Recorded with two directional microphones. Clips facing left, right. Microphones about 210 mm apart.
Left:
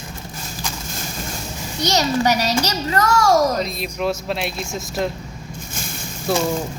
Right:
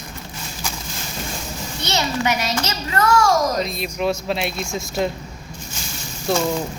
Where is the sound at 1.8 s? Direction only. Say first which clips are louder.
Left 4 dB; 40° left (ahead or behind).